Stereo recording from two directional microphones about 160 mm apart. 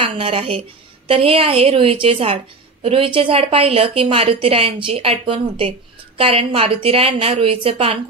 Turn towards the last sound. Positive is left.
turn(degrees=-35)  # may be behind; listen again after turning